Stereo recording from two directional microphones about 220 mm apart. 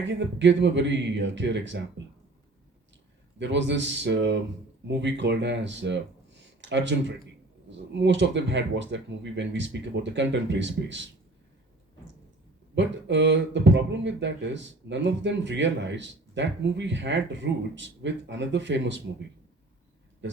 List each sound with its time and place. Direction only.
0.0 s speech: 55° right (ahead or behind)
3.3 s speech: 55° right (ahead or behind)
7.9 s speech: 55° right (ahead or behind)
12.7 s speech: 55° right (ahead or behind)
20.2 s speech: 55° right (ahead or behind)